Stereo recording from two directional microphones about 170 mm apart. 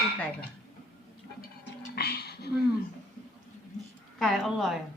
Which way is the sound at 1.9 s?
70° left (ahead or behind).